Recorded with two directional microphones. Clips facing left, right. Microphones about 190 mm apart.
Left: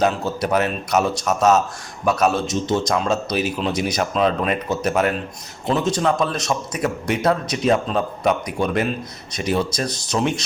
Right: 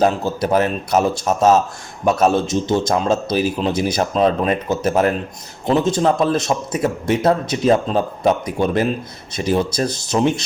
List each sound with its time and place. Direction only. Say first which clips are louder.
0.0 s speech: right 3 dB; 35° right (ahead or behind)
2.3 s a man's voice: right 4 dB; centre (ahead or behind)
2.7 s speech: right 3 dB; 35° right (ahead or behind)
9.9 s a man's voice: right 3 dB; centre (ahead or behind)